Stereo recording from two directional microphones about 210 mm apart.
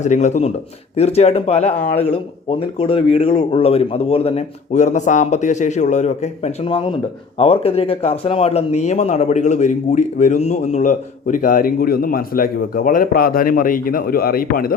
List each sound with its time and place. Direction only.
0.0 s speech: 35° left (ahead or behind)